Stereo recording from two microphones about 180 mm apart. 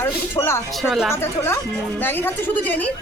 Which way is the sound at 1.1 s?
15° left (ahead or behind).